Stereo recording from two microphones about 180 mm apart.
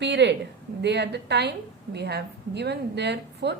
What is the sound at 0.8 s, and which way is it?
A woman's voice, 70° right (ahead or behind).